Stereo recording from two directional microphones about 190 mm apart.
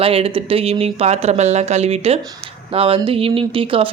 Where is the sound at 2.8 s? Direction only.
30° right (ahead or behind).